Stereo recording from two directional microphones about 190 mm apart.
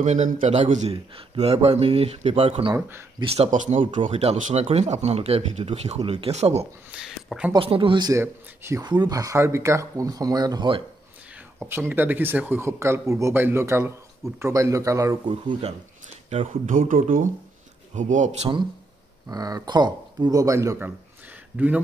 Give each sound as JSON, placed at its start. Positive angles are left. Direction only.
{"t": 0.0, "sound": "speech", "side_deg": -40}
{"t": 2.7, "sound": "speech", "side_deg": -15}
{"t": 3.3, "sound": "speech", "side_deg": -35}
{"t": 6.9, "sound": "speech", "side_deg": -5}
{"t": 7.5, "sound": "speech", "side_deg": -30}
{"t": 11.6, "sound": "speech", "side_deg": -10}
{"t": 16.3, "sound": "speech", "side_deg": -40}
{"t": 19.2, "sound": "speech", "side_deg": -20}